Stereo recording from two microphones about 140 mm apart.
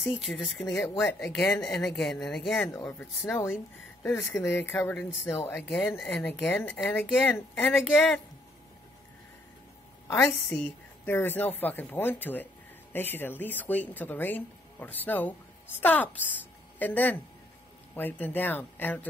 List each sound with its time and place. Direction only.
0.1 s speech: centre (ahead or behind)
1.3 s speech: 15° left (ahead or behind)
1.6 s speech: 5° left (ahead or behind)
2.6 s speech: 20° left (ahead or behind)
5.7 s speech: 5° left (ahead or behind)
10.2 s speech: 10° left (ahead or behind)